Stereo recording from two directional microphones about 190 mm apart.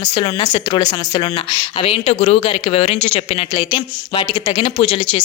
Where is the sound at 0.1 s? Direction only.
25° left (ahead or behind).